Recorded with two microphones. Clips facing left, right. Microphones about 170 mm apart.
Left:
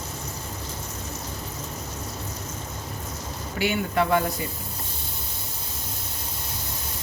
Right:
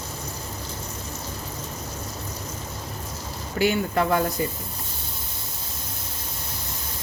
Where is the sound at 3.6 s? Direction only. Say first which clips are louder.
Right 3 dB; 40° right (ahead or behind).